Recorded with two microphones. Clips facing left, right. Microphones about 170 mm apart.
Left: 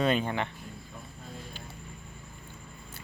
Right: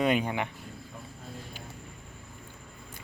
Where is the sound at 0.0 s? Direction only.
15° right (ahead or behind).